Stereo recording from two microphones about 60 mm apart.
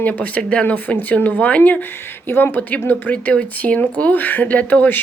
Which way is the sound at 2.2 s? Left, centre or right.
Left.